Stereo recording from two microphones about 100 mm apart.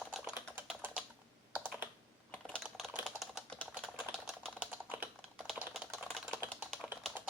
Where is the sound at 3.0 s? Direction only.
Centre (ahead or behind).